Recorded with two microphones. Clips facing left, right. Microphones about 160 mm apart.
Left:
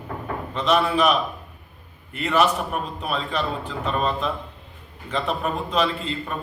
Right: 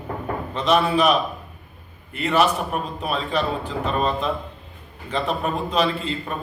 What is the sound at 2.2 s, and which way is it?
A man's voice, centre (ahead or behind).